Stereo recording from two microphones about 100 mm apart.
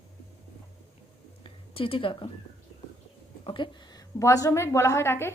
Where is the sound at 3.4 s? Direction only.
55° left (ahead or behind).